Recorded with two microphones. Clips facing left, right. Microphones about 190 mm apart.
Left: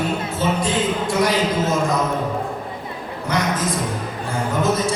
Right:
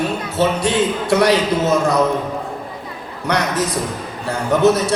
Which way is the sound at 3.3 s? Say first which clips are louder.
Right 3 dB; 70° right (ahead or behind).